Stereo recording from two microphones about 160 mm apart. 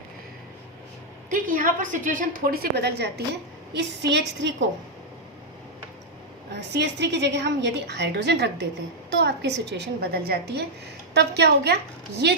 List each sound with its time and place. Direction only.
1.3 s a woman's voice: 55° right (ahead or behind); by 4.5 s 90° right
6.6 s a woman's voice: 90° right